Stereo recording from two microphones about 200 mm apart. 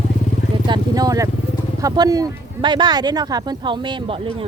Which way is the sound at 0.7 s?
20° right (ahead or behind).